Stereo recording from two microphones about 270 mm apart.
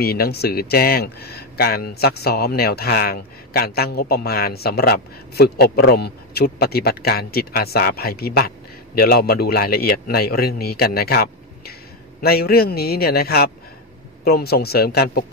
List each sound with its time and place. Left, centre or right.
0.0 s speech: left